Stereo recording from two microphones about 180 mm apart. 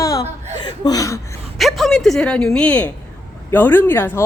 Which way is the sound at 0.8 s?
20° left (ahead or behind).